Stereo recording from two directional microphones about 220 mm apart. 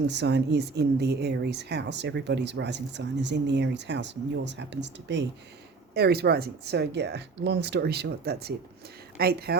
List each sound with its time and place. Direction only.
0.1 s speech: 50° right (ahead or behind)